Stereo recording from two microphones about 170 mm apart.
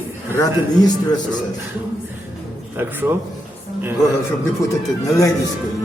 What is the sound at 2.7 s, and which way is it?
Speech, 15° right (ahead or behind).